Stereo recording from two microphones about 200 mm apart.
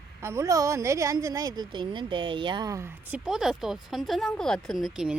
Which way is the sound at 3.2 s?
Centre (ahead or behind).